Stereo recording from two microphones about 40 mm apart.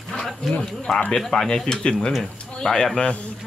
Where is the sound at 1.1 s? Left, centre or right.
Centre.